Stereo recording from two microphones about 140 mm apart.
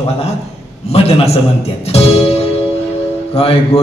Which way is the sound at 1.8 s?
45° left (ahead or behind).